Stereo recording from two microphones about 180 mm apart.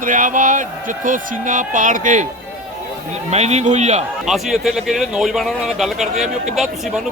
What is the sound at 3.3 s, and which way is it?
Speech, 40° right (ahead or behind).